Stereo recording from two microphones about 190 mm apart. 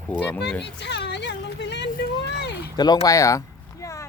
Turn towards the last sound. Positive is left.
turn(degrees=15)  # may be behind; listen again after turning